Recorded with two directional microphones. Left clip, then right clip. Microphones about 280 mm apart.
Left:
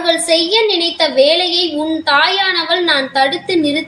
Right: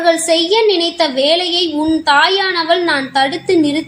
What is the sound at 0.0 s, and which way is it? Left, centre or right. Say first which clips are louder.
A woman's voice: right 1 dB; right.